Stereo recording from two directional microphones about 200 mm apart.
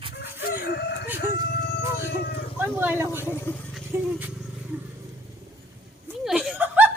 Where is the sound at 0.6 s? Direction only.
50° left (ahead or behind).